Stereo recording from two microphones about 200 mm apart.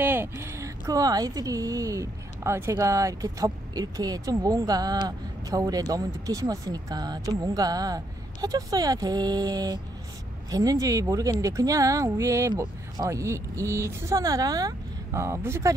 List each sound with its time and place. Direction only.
0.0 s speech: 10° right (ahead or behind)